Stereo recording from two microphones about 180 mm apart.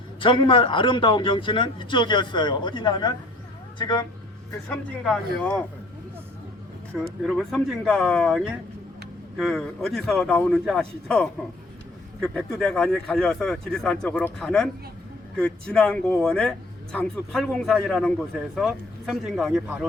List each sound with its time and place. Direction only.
0.2 s a man's voice: 30° left (ahead or behind)
5.0 s speech: 5° left (ahead or behind)
6.9 s speech: 5° left (ahead or behind)